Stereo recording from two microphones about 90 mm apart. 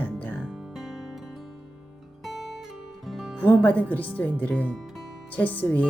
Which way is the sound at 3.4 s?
15° left (ahead or behind).